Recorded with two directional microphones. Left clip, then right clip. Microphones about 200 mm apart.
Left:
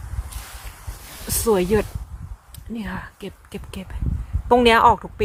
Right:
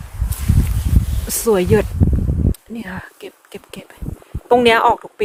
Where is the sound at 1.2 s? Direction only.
10° right (ahead or behind).